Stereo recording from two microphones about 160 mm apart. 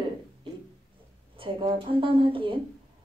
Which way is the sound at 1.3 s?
35° right (ahead or behind).